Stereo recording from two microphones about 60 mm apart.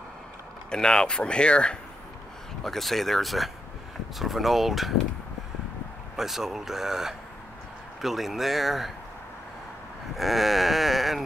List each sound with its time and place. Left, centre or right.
0.7 s speech: centre
2.6 s speech: centre
6.1 s speech: centre
10.1 s speech: centre